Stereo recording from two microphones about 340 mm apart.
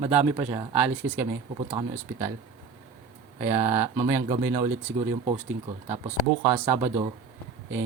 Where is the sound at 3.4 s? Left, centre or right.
Centre.